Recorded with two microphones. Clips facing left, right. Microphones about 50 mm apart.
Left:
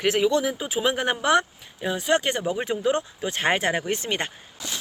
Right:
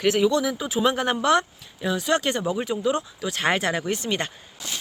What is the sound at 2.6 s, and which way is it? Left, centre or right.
Speech, left.